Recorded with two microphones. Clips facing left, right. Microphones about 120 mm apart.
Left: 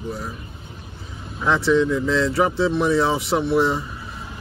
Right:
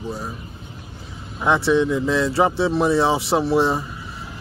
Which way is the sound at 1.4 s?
20° right (ahead or behind).